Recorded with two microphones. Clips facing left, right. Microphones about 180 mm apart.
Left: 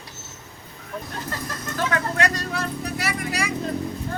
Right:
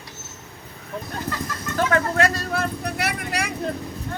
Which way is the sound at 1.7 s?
50° right (ahead or behind).